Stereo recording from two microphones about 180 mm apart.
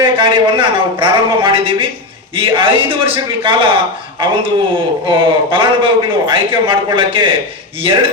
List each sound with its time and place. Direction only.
0.2 s a man's voice: 25° right (ahead or behind)